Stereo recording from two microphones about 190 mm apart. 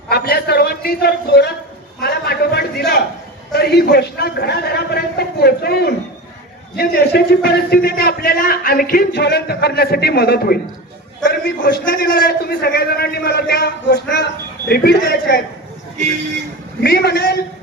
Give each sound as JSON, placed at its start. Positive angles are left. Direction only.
{"t": 0.1, "sound": "a sound", "side_deg": 55}
{"t": 3.5, "sound": "a man's voice", "side_deg": 60}
{"t": 16.8, "sound": "a man's voice", "side_deg": 55}